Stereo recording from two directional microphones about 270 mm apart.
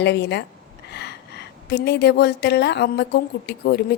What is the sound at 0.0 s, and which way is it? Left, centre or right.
Speech, left.